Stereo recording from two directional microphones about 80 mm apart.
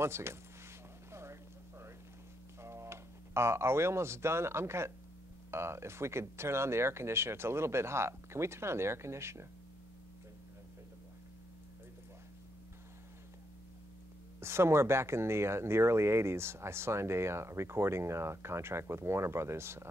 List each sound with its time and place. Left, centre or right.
0.0 s speech: right
1.1 s a sound: right
2.6 s speech: right
14.4 s speech: right